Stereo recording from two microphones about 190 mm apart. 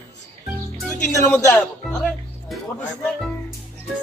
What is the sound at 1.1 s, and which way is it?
Speech, 15° left (ahead or behind).